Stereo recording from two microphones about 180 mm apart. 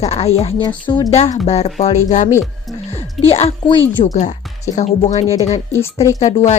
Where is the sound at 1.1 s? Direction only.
40° left (ahead or behind).